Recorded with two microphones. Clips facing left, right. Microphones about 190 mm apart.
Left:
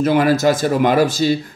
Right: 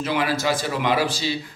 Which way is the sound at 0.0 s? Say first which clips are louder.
Left 9 dB; 45° left (ahead or behind).